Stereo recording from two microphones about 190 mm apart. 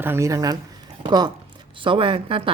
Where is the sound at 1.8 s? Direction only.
25° right (ahead or behind).